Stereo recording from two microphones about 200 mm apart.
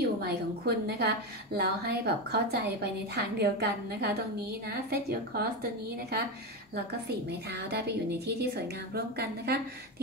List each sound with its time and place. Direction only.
0.0 s a woman's voice: 50° right (ahead or behind)